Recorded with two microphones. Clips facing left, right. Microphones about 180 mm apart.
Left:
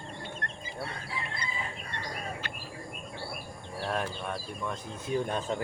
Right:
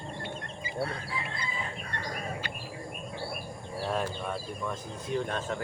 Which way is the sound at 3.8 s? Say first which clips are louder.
Right 1 dB; 5° right (ahead or behind).